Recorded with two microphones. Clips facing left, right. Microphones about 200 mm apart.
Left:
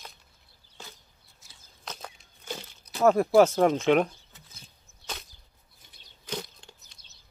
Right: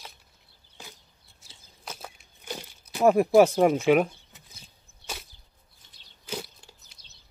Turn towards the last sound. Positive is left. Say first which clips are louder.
# even
turn(degrees=-5)  # may be behind; listen again after turning